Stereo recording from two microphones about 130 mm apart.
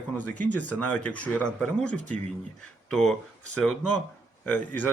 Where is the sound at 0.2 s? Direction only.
10° left (ahead or behind).